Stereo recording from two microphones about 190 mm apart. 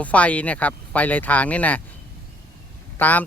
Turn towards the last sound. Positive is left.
turn(degrees=10)  # may be behind; listen again after turning